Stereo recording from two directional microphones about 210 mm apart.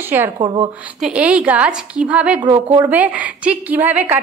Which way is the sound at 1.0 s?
5° right (ahead or behind).